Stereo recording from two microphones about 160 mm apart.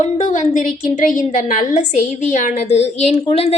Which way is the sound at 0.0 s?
45° left (ahead or behind).